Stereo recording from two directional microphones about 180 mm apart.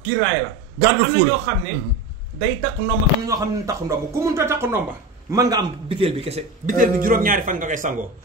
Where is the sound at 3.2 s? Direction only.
20° right (ahead or behind).